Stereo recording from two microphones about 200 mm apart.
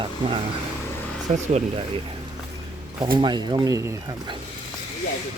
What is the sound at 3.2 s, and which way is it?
Speech, 20° right (ahead or behind).